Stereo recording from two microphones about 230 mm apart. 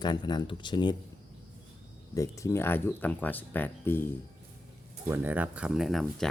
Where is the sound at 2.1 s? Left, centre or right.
Centre.